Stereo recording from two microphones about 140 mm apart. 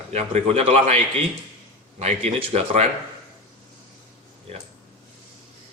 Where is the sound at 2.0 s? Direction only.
45° right (ahead or behind).